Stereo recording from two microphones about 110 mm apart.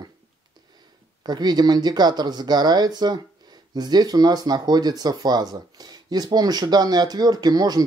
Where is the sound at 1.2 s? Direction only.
40° right (ahead or behind).